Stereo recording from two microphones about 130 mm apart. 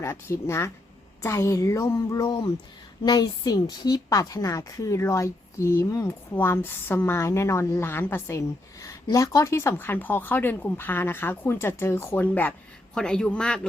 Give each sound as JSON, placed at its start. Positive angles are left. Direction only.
{"t": 0.0, "sound": "a woman's voice", "side_deg": 20}
{"t": 3.0, "sound": "a woman's voice", "side_deg": 35}